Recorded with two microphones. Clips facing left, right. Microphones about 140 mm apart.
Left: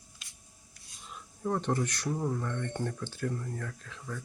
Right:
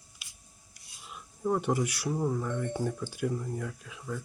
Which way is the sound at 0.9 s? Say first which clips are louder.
Even; 5° right (ahead or behind).